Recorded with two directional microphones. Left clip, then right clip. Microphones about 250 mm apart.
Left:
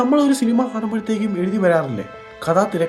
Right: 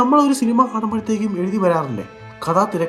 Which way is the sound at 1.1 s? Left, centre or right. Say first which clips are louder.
Even; centre.